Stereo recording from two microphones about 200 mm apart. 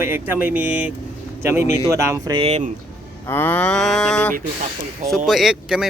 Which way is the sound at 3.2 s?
10° left (ahead or behind).